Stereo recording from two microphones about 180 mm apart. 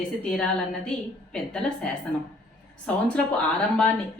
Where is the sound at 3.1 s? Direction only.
5° left (ahead or behind).